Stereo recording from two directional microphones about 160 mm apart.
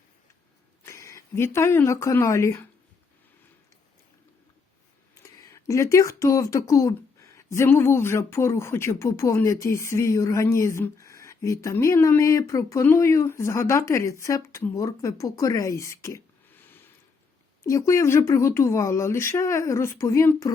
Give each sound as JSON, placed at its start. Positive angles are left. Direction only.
{"t": 0.9, "sound": "speech", "side_deg": 20}
{"t": 5.1, "sound": "speech", "side_deg": 20}